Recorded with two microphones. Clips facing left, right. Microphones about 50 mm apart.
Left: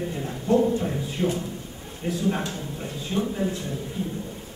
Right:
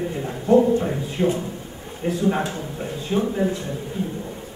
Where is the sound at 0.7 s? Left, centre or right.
Centre.